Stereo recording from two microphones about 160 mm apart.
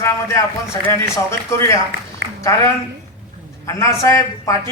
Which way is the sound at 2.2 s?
90° right.